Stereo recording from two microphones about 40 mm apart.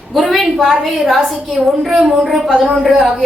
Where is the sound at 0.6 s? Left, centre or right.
Centre.